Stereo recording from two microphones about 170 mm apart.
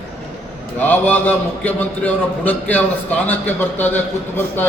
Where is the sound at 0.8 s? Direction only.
10° left (ahead or behind).